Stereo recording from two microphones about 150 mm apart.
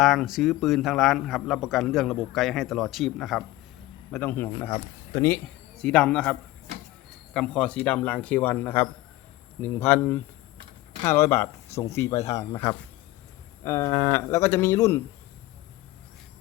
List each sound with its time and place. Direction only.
0.0 s a man's voice: centre (ahead or behind)
4.1 s speech: 15° left (ahead or behind)
7.3 s speech: 5° left (ahead or behind)